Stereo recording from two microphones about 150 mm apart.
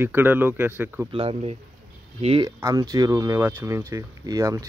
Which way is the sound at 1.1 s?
40° right (ahead or behind).